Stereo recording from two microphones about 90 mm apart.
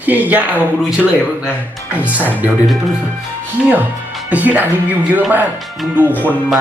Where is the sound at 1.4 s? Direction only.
15° right (ahead or behind).